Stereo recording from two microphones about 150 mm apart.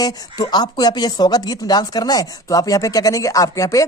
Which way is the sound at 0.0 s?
25° left (ahead or behind).